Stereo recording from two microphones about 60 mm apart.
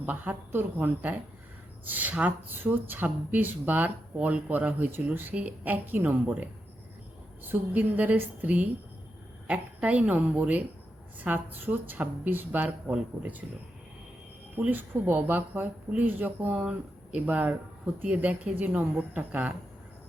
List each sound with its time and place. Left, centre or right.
0.0 s a woman's voice: right
5.3 s speech: right
14.7 s a woman's voice: right